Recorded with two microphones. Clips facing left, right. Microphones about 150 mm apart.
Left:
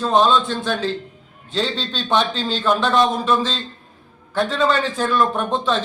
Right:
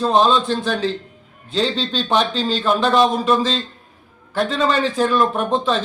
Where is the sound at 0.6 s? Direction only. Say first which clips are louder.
Right 1 dB; centre (ahead or behind).